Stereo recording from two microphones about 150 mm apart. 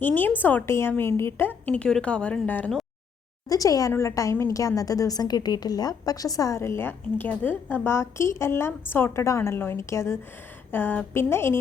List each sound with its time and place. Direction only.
0.0 s a woman's voice: 10° left (ahead or behind)
3.5 s a woman's voice: 25° left (ahead or behind)